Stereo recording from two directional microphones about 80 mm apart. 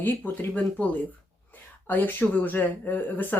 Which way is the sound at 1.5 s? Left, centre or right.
Left.